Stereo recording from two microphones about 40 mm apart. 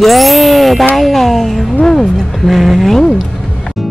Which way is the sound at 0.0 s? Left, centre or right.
Centre.